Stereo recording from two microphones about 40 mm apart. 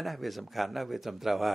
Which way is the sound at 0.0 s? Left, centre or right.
Centre.